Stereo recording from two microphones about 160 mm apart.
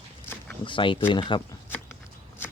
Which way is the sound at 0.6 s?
30° left (ahead or behind).